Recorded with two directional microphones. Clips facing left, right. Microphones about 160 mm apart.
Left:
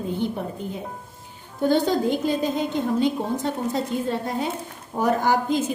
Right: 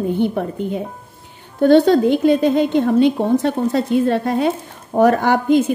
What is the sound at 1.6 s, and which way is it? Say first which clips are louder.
A woman's voice: right 9 dB; 70° right (ahead or behind).